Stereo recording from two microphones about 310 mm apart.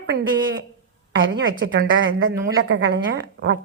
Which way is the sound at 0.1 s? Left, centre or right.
Right.